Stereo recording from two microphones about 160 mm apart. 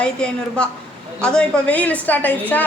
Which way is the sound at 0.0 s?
5° left (ahead or behind).